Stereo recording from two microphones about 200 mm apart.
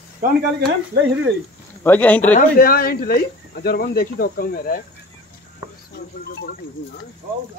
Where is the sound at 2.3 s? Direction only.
45° left (ahead or behind).